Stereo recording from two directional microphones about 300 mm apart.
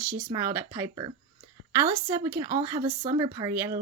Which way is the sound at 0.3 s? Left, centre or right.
Centre.